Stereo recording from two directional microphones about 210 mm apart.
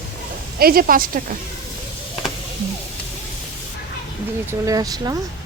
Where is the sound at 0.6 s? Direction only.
45° right (ahead or behind).